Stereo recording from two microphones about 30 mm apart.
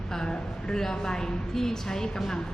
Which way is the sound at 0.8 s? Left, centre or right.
Centre.